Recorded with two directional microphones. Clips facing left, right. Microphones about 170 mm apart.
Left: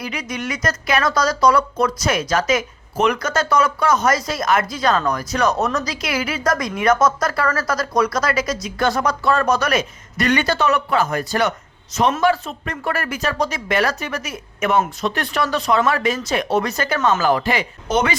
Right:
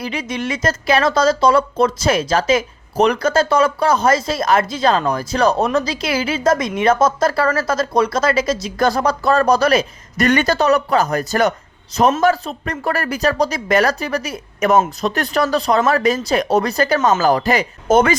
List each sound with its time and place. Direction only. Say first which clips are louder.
0.0 s speech: right 3 dB; 30° right (ahead or behind)
10.2 s speech: right 3 dB; 45° right (ahead or behind)